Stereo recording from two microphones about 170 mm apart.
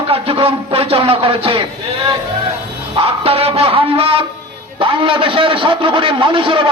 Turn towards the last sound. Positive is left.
turn(degrees=-30)  # may be behind; listen again after turning